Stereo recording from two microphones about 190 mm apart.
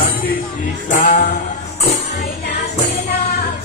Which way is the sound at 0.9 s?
45° left (ahead or behind).